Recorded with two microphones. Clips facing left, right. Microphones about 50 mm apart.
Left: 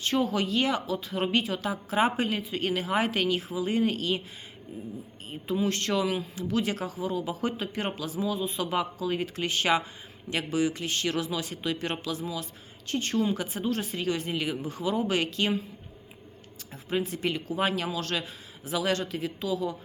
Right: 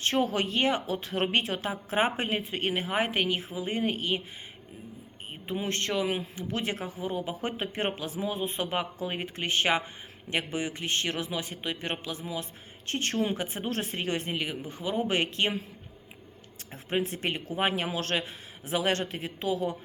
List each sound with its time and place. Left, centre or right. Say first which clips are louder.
0.0 s a woman's voice: even; right
5.3 s a man's voice: left 4 dB; right
12.9 s a woman's voice: left 2 dB; right
13.3 s a woman's voice: left 2 dB; right
14.3 s a man's voice: left 3 dB; right
16.7 s a woman's voice: even; right
17.8 s a woman's voice: right 1 dB; right